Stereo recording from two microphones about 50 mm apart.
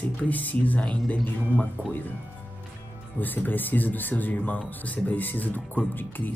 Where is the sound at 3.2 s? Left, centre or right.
Left.